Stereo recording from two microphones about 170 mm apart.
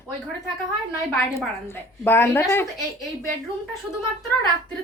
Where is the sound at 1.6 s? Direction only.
15° left (ahead or behind).